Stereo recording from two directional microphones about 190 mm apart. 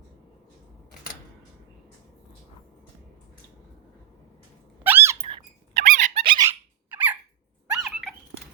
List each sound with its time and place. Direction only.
4.8 s squeak: 10° right (ahead or behind)
5.2 s squeak: 30° right (ahead or behind)
5.8 s squeak: 40° right (ahead or behind)
6.2 s squeak: 25° right (ahead or behind)
6.5 s squeak: 10° right (ahead or behind)
7.7 s a sound: centre (ahead or behind)